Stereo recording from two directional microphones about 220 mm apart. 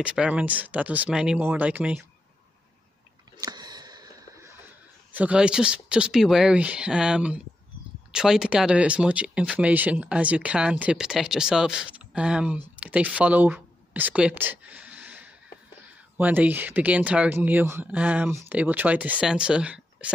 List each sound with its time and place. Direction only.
0.0 s speech: 5° right (ahead or behind)
3.3 s a sound: 20° right (ahead or behind)
5.1 s speech: 5° right (ahead or behind)